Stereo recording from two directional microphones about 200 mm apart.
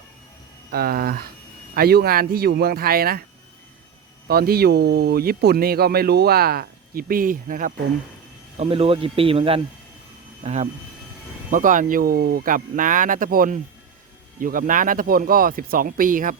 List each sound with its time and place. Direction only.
0.7 s speech: 50° right (ahead or behind)
4.3 s speech: 50° right (ahead or behind)
8.5 s speech: 30° right (ahead or behind)